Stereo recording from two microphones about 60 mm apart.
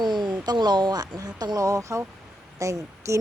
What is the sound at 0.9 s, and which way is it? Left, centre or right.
Speech, right.